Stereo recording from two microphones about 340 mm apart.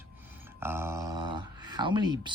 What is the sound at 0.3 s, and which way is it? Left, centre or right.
Speech, centre.